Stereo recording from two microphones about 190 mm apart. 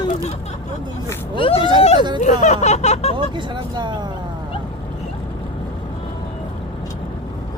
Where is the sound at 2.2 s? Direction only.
40° left (ahead or behind).